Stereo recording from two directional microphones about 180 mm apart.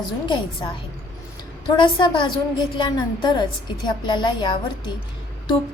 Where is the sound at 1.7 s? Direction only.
25° left (ahead or behind).